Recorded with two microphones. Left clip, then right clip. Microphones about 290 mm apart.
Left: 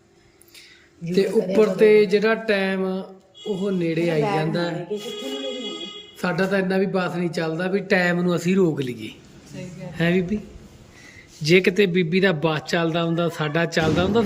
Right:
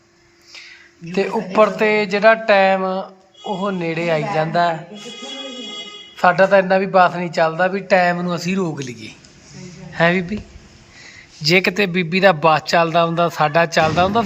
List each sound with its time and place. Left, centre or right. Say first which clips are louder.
1.1 s a man's voice: right 1 dB; centre
6.1 s a man's voice: right 11 dB; centre